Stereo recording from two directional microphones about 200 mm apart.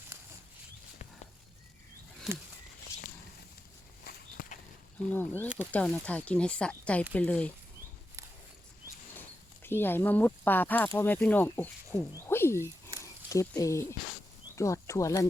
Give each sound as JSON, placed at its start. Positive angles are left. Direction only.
{"t": 2.3, "sound": "speech", "side_deg": 0}
{"t": 4.0, "sound": "walk", "side_deg": 50}
{"t": 5.0, "sound": "speech", "side_deg": 10}
{"t": 9.6, "sound": "speech", "side_deg": 10}
{"t": 13.0, "sound": "a sound", "side_deg": 15}
{"t": 14.5, "sound": "speech", "side_deg": 15}